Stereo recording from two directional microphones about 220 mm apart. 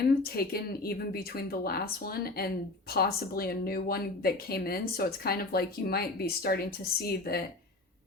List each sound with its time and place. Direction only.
0.3 s speech: 45° left (ahead or behind)